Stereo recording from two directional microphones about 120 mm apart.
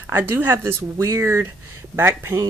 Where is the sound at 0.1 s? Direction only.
15° right (ahead or behind).